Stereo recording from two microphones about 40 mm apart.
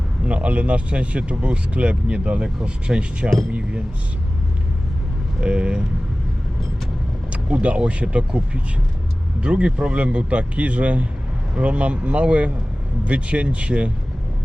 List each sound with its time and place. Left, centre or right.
0.3 s speech: right
5.4 s speech: right
7.3 s speech: right
9.4 s speech: right